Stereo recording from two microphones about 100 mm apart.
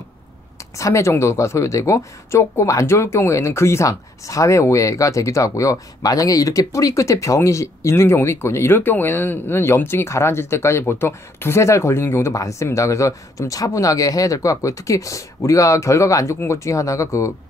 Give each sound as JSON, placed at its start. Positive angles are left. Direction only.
{"t": 0.7, "sound": "speech", "side_deg": 30}